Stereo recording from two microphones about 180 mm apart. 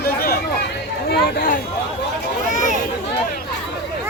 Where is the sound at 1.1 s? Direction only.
55° left (ahead or behind).